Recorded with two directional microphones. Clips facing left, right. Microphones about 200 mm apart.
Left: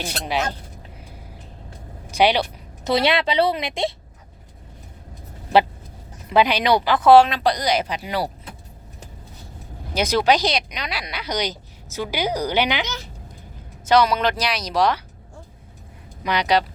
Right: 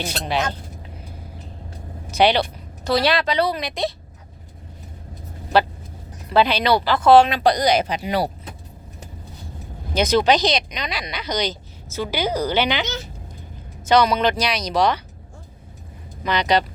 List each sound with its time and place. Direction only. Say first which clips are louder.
0.0 s speech: right 1 dB; 10° left (ahead or behind)
2.0 s a sound: right 1 dB; 10° left (ahead or behind)
2.9 s a woman's voice: even; 25° left (ahead or behind)
6.3 s speech: even; 15° left (ahead or behind)
7.3 s a woman's voice: right 3 dB; 10° right (ahead or behind)
7.5 s speech: right 4 dB; 50° right (ahead or behind)
8.0 s speech: right 3 dB; 25° right (ahead or behind)
9.9 s speech: right 2 dB; 10° left (ahead or behind)
13.8 s speech: right 1 dB; 5° left (ahead or behind)
16.2 s speech: even; 10° left (ahead or behind)